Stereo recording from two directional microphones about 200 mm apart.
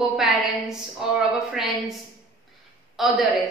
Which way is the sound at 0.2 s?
5° right (ahead or behind).